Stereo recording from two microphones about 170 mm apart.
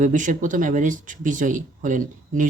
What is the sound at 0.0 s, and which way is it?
Speech, 50° right (ahead or behind).